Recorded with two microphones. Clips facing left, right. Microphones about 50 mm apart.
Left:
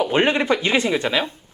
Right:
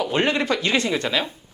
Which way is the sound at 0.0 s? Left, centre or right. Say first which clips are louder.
Left 3 dB; left.